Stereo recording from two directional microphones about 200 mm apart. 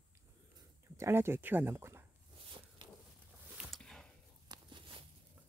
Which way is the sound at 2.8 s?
25° right (ahead or behind).